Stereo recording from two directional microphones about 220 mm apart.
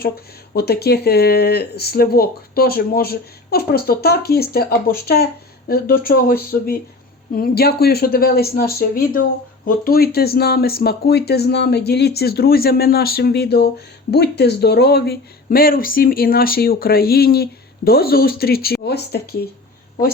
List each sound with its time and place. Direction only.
0.5 s speech: 45° left (ahead or behind)